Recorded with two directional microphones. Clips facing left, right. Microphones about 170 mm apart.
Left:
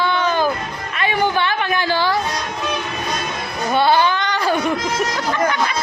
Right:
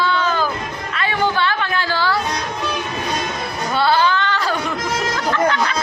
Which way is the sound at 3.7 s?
15° left (ahead or behind).